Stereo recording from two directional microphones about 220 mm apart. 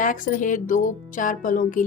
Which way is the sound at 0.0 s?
35° left (ahead or behind).